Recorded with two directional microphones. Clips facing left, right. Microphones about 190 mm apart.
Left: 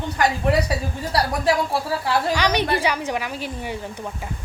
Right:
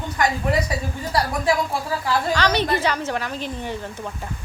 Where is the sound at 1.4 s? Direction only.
35° left (ahead or behind).